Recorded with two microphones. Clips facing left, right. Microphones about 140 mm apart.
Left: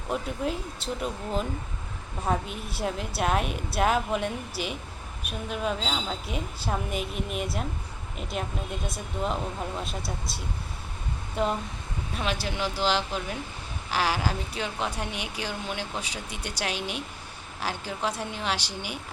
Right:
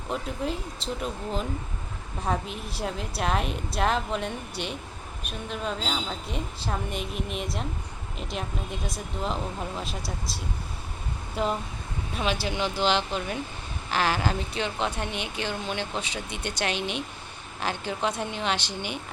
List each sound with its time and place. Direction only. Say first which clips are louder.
0.1 s a woman's voice: left 1 dB; centre (ahead or behind)
9.8 s a woman's voice: even; centre (ahead or behind)
16.3 s speech: right 3 dB; 60° right (ahead or behind)
16.6 s a woman's voice: right 2 dB; 5° left (ahead or behind)